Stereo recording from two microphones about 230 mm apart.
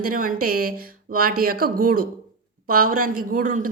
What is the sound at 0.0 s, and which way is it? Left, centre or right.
Speech, right.